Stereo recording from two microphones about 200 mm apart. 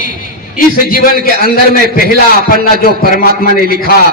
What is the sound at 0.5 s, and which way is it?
A man's voice, 45° left (ahead or behind).